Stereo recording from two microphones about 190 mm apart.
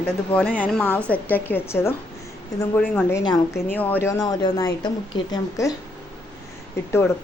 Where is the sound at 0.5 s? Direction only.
5° left (ahead or behind).